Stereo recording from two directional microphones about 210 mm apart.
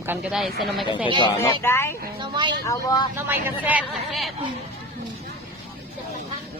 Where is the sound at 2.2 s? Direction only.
20° right (ahead or behind).